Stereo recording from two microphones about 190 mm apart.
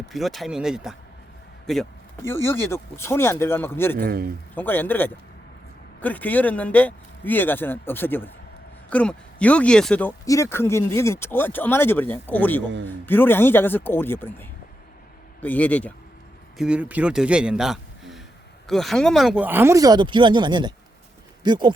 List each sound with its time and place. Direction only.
0.1 s a man's voice: centre (ahead or behind)
2.2 s speech: 10° left (ahead or behind)
3.9 s a man's voice: 55° right (ahead or behind)
4.5 s speech: 10° left (ahead or behind)
16.6 s a man's voice: 5° right (ahead or behind); by 21.7 s 25° right (ahead or behind)